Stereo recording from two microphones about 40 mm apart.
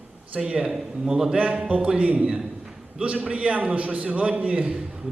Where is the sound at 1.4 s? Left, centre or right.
Right.